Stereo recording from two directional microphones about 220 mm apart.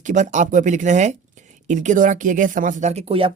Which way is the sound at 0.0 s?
35° right (ahead or behind).